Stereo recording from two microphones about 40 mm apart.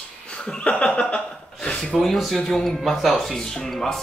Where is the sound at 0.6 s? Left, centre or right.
Left.